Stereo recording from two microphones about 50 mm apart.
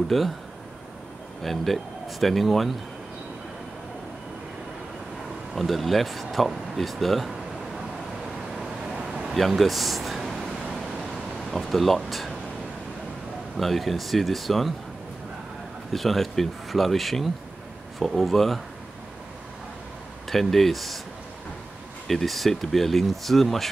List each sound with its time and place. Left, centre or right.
0.1 s speech: centre
1.4 s speech: centre
5.5 s speech: centre
9.3 s a sound: centre
11.5 s speech: centre
13.6 s speech: centre
15.9 s speech: centre
20.2 s speech: centre
22.0 s speech: centre